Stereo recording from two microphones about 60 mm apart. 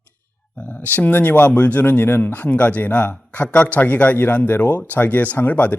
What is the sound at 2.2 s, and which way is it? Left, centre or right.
Speech, left.